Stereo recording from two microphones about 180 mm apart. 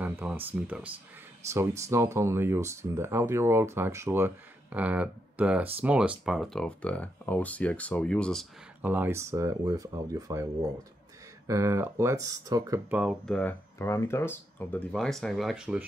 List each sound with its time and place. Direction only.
0.0 s speech: 10° right (ahead or behind)
8.8 s speech: 10° right (ahead or behind)
11.4 s speech: 15° right (ahead or behind)
12.9 s speech: centre (ahead or behind)